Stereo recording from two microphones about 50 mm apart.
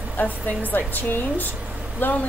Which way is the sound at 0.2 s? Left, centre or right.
Left.